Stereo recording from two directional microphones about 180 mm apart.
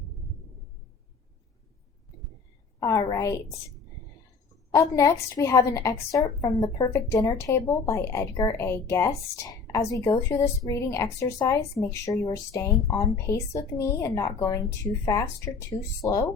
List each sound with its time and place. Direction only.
2.8 s a woman's voice: 20° left (ahead or behind)
4.7 s a woman's voice: 15° left (ahead or behind)